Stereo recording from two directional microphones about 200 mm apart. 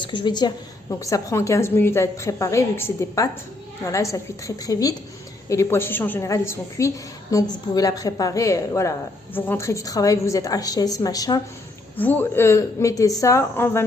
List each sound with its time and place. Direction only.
0.0 s a woman's voice: 25° left (ahead or behind)